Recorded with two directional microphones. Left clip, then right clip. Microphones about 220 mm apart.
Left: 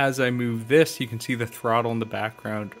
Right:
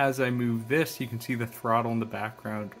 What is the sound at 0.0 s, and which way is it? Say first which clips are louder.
Speech: left 3 dB; 35° left (ahead or behind).